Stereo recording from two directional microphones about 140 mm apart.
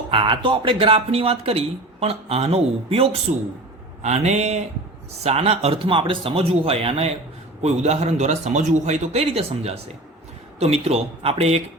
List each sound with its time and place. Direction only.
0.1 s speech: 35° right (ahead or behind)